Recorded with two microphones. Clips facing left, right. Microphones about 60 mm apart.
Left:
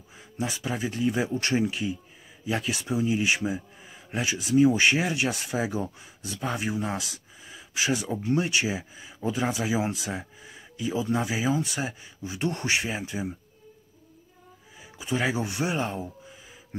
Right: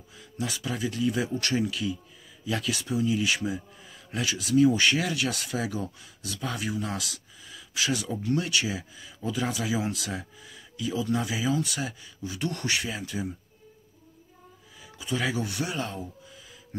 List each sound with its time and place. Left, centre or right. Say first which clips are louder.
0.1 s speech: left 2 dB; left
14.8 s speech: left 2 dB; left